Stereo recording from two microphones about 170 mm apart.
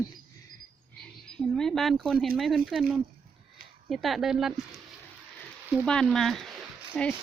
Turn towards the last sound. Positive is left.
turn(degrees=5)  # may be behind; listen again after turning